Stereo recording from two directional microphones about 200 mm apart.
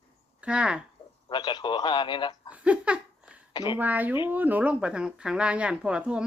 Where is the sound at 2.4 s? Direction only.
5° right (ahead or behind).